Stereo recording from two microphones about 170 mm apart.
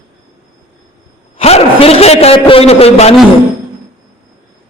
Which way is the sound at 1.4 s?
35° left (ahead or behind).